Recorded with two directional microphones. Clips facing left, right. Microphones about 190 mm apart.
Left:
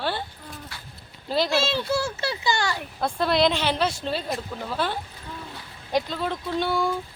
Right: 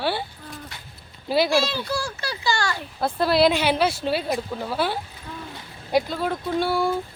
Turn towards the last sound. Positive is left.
turn(degrees=-5)  # may be behind; listen again after turning